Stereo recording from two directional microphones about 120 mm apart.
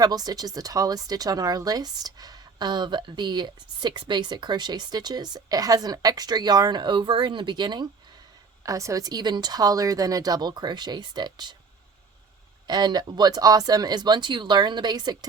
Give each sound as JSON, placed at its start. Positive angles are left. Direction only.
{"t": 0.0, "sound": "speech", "side_deg": -35}
{"t": 8.6, "sound": "speech", "side_deg": -25}
{"t": 12.6, "sound": "speech", "side_deg": -35}